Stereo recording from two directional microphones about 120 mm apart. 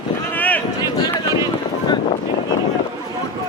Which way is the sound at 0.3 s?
15° left (ahead or behind).